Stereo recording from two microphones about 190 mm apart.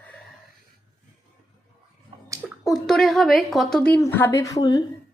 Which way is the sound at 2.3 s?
15° right (ahead or behind).